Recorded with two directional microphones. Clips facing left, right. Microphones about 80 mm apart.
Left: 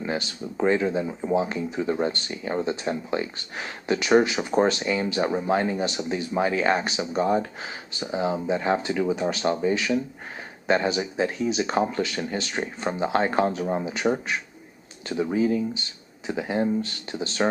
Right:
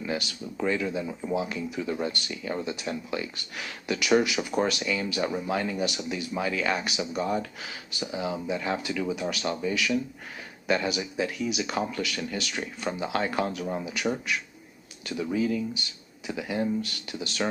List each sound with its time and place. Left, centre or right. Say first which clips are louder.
0.0 s speech: left 3 dB; left